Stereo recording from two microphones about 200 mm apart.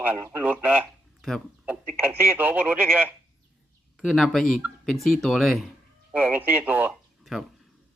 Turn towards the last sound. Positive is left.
turn(degrees=0)  # may be behind; listen again after turning